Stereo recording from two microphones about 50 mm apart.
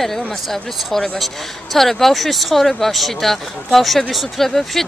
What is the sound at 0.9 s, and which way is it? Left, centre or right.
A woman's voice, centre.